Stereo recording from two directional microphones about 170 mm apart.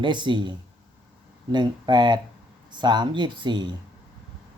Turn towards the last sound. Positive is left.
turn(degrees=-25)  # may be behind; listen again after turning